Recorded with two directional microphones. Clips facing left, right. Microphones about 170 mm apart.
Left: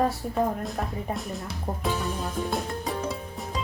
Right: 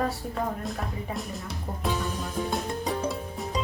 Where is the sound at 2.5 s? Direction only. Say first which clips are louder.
Even; centre (ahead or behind).